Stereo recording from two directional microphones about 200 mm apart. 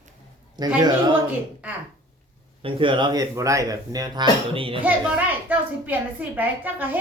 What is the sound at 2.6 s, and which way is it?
A woman's voice, 25° right (ahead or behind).